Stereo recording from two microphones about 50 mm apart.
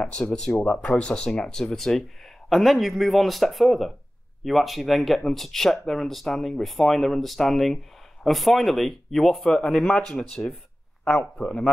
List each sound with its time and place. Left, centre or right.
0.0 s speech: centre